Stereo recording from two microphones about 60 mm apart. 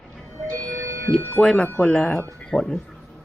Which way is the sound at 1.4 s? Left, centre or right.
Centre.